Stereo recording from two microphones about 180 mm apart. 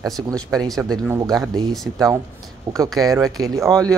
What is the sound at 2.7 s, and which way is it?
Speech, 20° right (ahead or behind).